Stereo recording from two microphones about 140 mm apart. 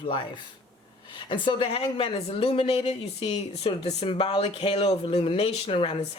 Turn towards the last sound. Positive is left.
turn(degrees=40)  # may be behind; listen again after turning